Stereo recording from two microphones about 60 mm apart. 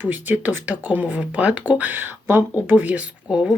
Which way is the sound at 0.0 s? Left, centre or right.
Right.